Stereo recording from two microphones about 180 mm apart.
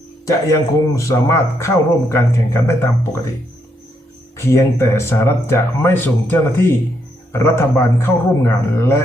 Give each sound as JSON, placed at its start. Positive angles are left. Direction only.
{"t": 0.3, "sound": "speech", "side_deg": 15}
{"t": 4.4, "sound": "speech", "side_deg": 15}